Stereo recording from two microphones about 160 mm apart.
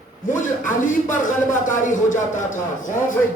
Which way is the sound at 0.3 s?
55° left (ahead or behind).